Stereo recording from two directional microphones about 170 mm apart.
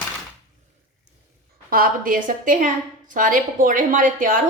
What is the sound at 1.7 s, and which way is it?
A woman's voice, 60° right (ahead or behind).